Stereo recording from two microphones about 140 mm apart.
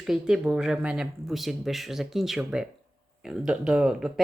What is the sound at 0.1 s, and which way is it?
A woman's voice, 5° right (ahead or behind).